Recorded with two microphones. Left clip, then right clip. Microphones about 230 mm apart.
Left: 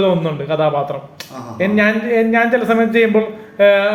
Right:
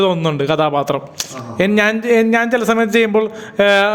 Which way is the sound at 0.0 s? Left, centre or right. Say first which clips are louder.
Right 1 dB; right.